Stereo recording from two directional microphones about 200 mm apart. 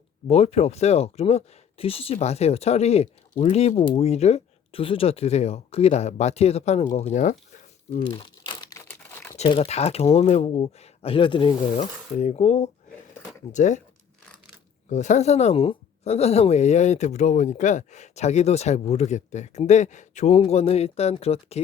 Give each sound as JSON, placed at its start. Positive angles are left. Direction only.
{"t": 0.3, "sound": "speech", "side_deg": 30}
{"t": 8.0, "sound": "crumpling", "side_deg": 25}
{"t": 9.3, "sound": "speech", "side_deg": 30}
{"t": 14.8, "sound": "speech", "side_deg": 35}